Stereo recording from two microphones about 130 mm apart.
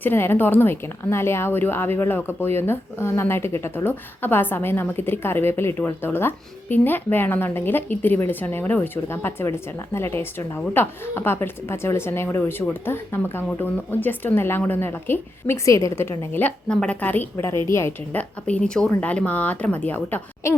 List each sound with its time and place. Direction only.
0.0 s a woman's voice: 15° left (ahead or behind)